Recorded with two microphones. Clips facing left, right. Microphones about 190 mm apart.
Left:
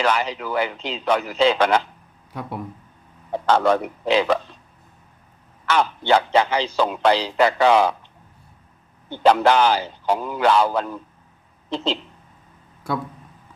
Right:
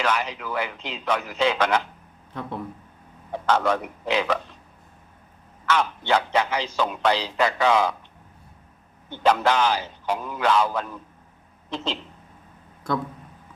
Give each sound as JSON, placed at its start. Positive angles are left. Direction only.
{"t": 0.0, "sound": "a man's voice", "side_deg": 30}
{"t": 2.3, "sound": "speech", "side_deg": 10}
{"t": 3.3, "sound": "a man's voice", "side_deg": 30}
{"t": 5.6, "sound": "a man's voice", "side_deg": 30}
{"t": 9.0, "sound": "a man's voice", "side_deg": 35}
{"t": 12.9, "sound": "speech", "side_deg": 10}